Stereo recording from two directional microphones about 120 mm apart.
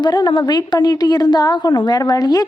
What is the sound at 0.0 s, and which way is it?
A woman's voice, 35° left (ahead or behind).